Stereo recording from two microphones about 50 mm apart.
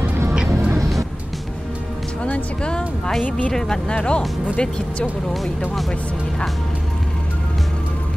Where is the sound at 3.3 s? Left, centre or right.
Left.